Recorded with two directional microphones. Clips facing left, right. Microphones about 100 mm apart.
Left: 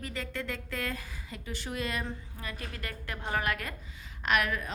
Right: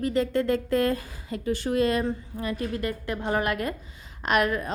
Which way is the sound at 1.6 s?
35° right (ahead or behind).